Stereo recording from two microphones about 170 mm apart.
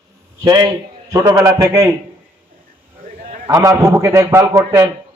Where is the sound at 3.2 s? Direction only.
55° right (ahead or behind).